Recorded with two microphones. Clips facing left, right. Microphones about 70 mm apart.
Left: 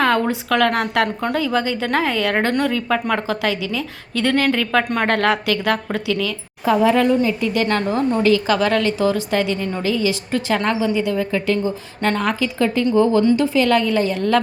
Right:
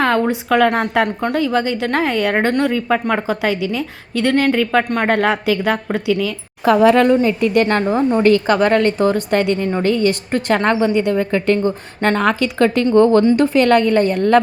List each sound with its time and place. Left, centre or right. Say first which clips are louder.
0.0 s a sound: right 1 dB; centre
0.3 s speech: right 3 dB; centre
6.7 s a woman's voice: right 4 dB; right
12.3 s a woman's voice: right 4 dB; right